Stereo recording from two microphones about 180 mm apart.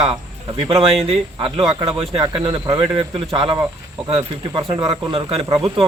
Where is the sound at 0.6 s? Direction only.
30° right (ahead or behind).